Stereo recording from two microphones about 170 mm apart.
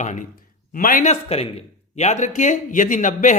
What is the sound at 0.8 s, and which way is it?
Speech, 55° left (ahead or behind).